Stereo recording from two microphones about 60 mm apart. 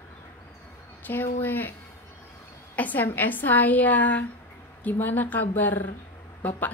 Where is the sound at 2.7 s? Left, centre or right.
Left.